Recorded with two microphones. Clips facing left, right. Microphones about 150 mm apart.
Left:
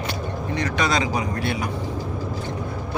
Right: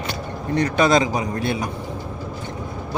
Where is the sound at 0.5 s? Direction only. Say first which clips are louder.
Right 7 dB; 40° right (ahead or behind).